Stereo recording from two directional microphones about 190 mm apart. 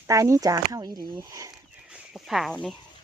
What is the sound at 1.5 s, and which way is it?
Chicken, 5° right (ahead or behind).